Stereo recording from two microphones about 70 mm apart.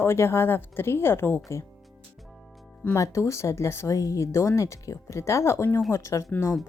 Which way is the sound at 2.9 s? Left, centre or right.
Left.